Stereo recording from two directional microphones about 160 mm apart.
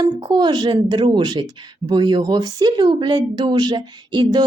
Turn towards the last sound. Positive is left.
turn(degrees=-25)  # may be behind; listen again after turning